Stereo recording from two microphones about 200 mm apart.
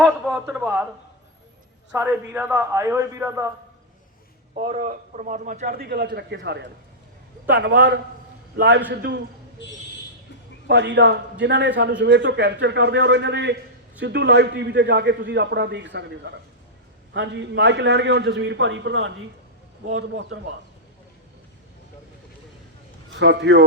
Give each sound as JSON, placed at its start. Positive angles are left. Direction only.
{"t": 0.0, "sound": "a man's voice", "side_deg": 0}
{"t": 1.9, "sound": "a man's voice", "side_deg": -10}
{"t": 4.5, "sound": "a man's voice", "side_deg": -40}
{"t": 10.7, "sound": "a man's voice", "side_deg": -60}
{"t": 23.1, "sound": "a man's voice", "side_deg": -60}